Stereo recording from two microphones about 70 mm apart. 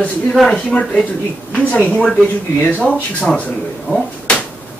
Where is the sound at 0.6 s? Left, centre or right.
Centre.